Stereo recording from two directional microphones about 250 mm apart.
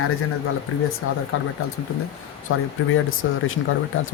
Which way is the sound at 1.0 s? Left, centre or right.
Left.